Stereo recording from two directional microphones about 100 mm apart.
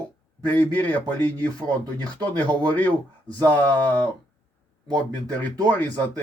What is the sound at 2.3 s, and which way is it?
Speech, 15° left (ahead or behind).